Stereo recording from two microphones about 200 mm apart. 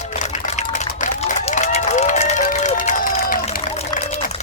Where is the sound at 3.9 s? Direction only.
35° left (ahead or behind).